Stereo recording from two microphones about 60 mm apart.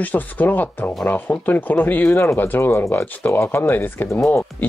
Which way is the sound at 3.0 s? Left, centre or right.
Left.